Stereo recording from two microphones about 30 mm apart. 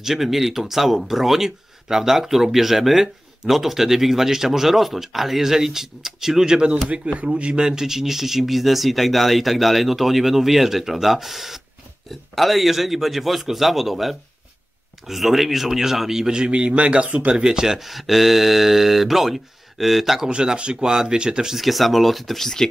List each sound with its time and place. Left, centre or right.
0.0 s speech: centre
7.2 s speech: right
7.6 s speech: centre
16.3 s speech: right
16.5 s a man's voice: right
17.4 s speech: right
17.7 s speech: centre
20.2 s speech: right
21.5 s speech: centre